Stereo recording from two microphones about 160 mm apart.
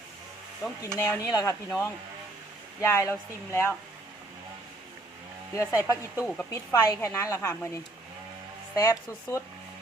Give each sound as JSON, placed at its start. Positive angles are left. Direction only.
{"t": 0.9, "sound": "a woman's voice", "side_deg": 15}
{"t": 5.5, "sound": "speech", "side_deg": 20}
{"t": 6.2, "sound": "a woman's voice", "side_deg": 10}
{"t": 6.5, "sound": "a woman's voice", "side_deg": 20}